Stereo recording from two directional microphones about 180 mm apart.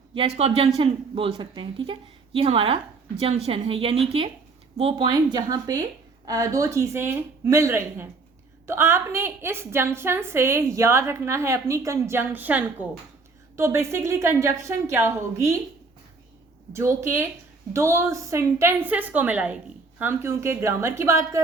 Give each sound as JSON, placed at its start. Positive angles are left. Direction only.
{"t": 0.1, "sound": "a woman's voice", "side_deg": -30}
{"t": 16.7, "sound": "a woman's voice", "side_deg": -15}